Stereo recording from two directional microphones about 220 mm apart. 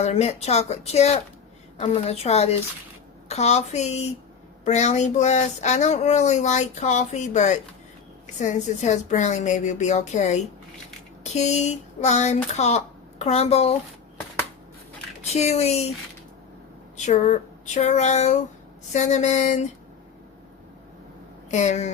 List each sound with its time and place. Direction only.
0.0 s speech: 30° left (ahead or behind)
15.2 s speech: 30° left (ahead or behind)
17.1 s speech: 30° left (ahead or behind)
21.5 s speech: 30° left (ahead or behind)